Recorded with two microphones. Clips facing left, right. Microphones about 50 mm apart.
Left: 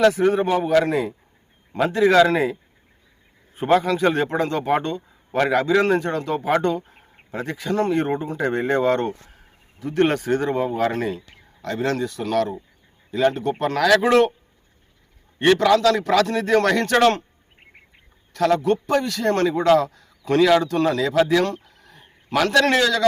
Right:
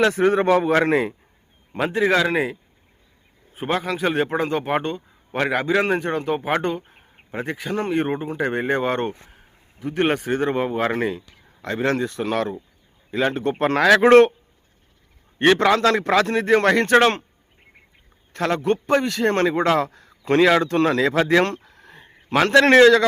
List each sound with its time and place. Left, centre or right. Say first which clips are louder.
0.0 s a man's voice: left 1 dB; right
0.4 s a man's voice: right 3 dB; right
0.7 s speech: even; right
1.7 s a man's voice: left 3 dB; centre
15.5 s speech: left 1 dB; right
18.3 s a man's voice: left 2 dB; right